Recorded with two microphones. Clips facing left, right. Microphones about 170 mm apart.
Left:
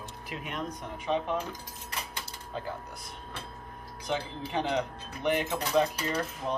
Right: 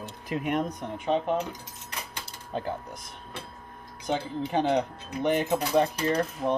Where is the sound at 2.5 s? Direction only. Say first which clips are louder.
Right 5 dB; 55° right (ahead or behind).